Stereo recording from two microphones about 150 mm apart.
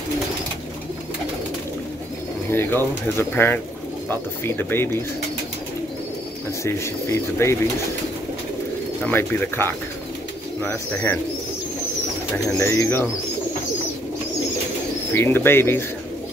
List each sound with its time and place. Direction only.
2.5 s speech: 15° left (ahead or behind)
6.6 s speech: 15° left (ahead or behind)
9.0 s speech: 15° left (ahead or behind)
12.4 s speech: 15° left (ahead or behind)
15.1 s speech: 15° left (ahead or behind)